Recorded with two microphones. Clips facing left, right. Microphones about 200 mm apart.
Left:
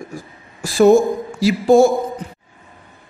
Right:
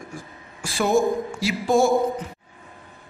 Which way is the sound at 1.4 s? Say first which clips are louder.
Left 9 dB; 35° left (ahead or behind).